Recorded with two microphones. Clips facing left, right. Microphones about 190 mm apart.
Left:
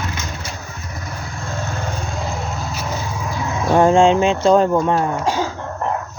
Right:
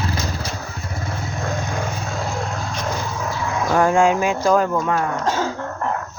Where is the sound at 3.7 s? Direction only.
25° left (ahead or behind).